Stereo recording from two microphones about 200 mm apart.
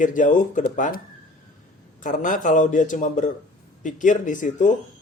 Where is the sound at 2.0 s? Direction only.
40° left (ahead or behind).